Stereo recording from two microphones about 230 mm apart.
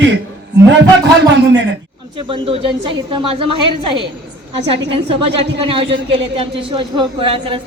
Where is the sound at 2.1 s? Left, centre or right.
Right.